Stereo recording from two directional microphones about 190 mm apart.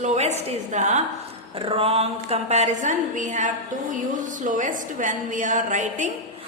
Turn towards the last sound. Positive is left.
turn(degrees=-40)  # may be behind; listen again after turning